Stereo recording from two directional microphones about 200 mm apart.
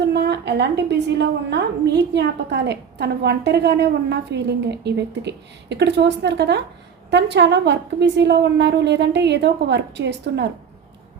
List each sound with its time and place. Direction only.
0.0 s a woman's voice: 55° right (ahead or behind)